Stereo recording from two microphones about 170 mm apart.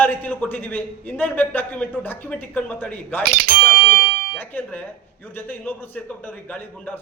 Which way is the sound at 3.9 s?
60° right (ahead or behind).